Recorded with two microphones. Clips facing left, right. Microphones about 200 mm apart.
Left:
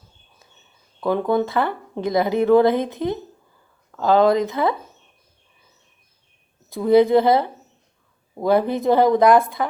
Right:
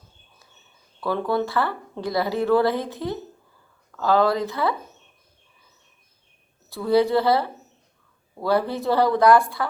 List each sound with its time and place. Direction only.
1.0 s speech: 20° left (ahead or behind)
6.7 s speech: 15° left (ahead or behind)